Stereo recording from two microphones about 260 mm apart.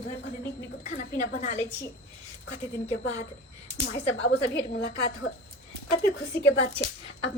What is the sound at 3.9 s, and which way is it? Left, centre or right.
A woman's voice, left.